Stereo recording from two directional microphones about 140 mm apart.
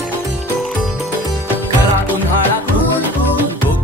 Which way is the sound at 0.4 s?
Centre (ahead or behind).